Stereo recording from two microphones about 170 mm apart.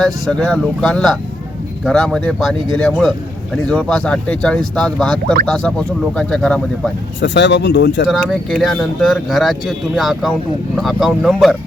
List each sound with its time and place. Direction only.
0.0 s speech: 5° left (ahead or behind)
7.2 s speech: 90° left
8.1 s speech: centre (ahead or behind)